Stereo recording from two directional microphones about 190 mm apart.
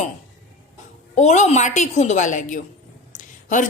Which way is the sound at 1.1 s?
40° left (ahead or behind).